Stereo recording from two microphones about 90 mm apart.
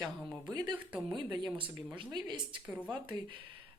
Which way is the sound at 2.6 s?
15° right (ahead or behind).